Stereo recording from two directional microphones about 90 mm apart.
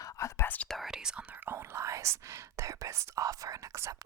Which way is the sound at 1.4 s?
30° right (ahead or behind).